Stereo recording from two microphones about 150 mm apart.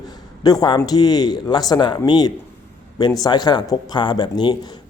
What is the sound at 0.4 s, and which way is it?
Speech, 25° left (ahead or behind).